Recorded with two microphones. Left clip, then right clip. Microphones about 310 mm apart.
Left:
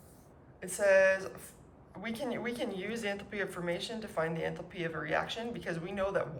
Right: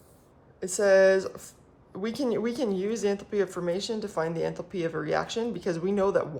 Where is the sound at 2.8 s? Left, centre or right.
Centre.